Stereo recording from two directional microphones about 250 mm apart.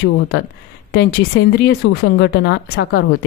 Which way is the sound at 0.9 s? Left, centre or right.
Left.